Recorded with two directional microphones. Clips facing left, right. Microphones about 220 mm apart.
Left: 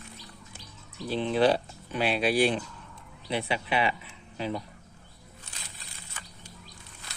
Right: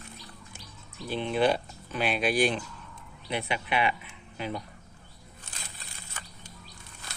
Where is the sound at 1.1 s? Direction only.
35° left (ahead or behind).